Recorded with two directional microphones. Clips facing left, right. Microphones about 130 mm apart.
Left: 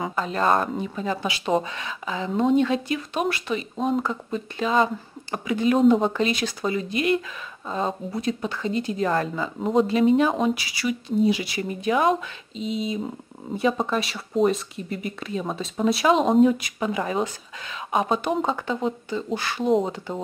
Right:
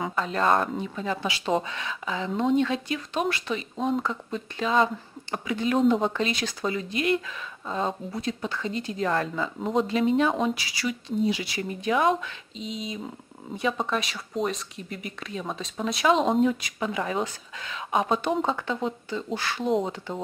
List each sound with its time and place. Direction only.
0.0 s speech: 5° left (ahead or behind)
0.9 s speech: 15° left (ahead or behind)